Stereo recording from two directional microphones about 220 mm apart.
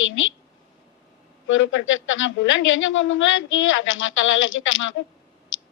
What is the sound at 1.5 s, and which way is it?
A man's voice, 60° left (ahead or behind).